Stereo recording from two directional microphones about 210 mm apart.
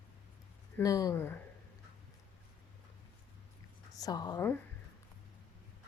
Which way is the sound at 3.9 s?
20° left (ahead or behind).